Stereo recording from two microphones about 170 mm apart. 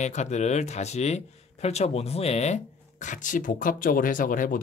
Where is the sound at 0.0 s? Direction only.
40° left (ahead or behind).